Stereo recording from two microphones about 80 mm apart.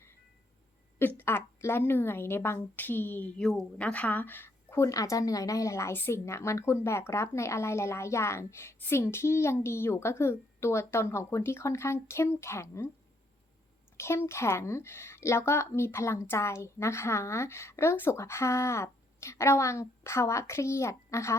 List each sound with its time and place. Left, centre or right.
0.9 s a woman's voice: left
3.3 s a woman's voice: centre; by 4.9 s left
4.9 s a woman's voice: left
13.9 s a woman's voice: left